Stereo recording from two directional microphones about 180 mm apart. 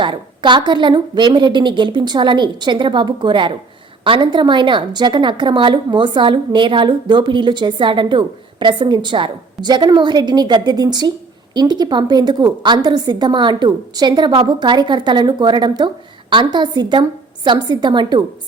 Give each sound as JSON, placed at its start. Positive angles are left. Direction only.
{"t": 0.0, "sound": "a woman's voice", "side_deg": -25}